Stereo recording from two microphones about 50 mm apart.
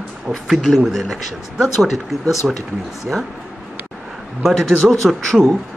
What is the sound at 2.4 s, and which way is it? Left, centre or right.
Speech, centre.